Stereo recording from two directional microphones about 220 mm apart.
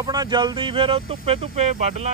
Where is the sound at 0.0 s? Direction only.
15° right (ahead or behind).